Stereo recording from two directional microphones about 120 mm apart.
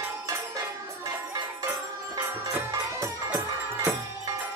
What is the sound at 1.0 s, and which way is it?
Music, 30° right (ahead or behind).